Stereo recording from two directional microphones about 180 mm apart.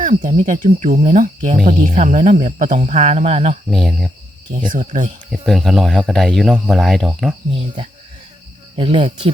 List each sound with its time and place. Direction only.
0.0 s speech: 45° right (ahead or behind)
3.7 s speech: centre (ahead or behind)
4.6 s speech: 45° right (ahead or behind)
5.3 s speech: centre (ahead or behind)
8.7 s speech: 30° right (ahead or behind)